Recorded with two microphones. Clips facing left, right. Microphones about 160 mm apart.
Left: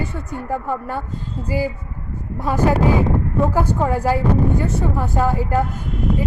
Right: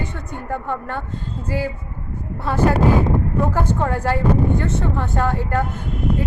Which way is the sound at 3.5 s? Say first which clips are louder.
Left 2 dB; 10° left (ahead or behind).